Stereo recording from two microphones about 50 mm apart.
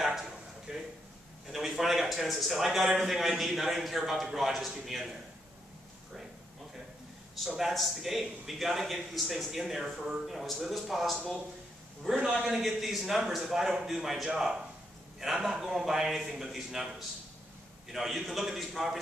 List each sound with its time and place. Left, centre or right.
0.0 s a sound: centre
1.5 s a man's voice: centre
7.3 s a man's voice: centre
17.9 s a man's voice: centre